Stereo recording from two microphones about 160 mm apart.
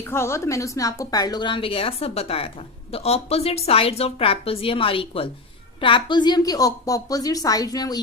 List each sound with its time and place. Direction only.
0.0 s a woman's voice: 15° left (ahead or behind)